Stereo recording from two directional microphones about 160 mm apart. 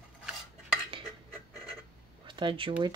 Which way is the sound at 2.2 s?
30° right (ahead or behind).